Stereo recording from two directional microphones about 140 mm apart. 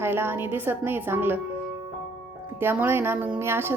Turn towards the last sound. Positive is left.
turn(degrees=-15)  # may be behind; listen again after turning